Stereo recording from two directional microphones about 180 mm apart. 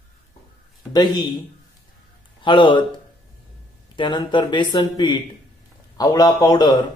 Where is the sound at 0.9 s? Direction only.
25° left (ahead or behind).